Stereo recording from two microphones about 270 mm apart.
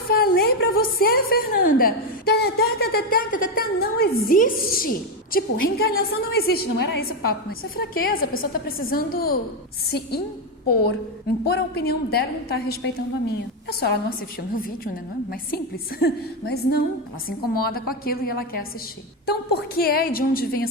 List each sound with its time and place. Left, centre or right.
0.1 s a woman's voice: left
11.4 s a woman's voice: left
15.3 s a woman's voice: left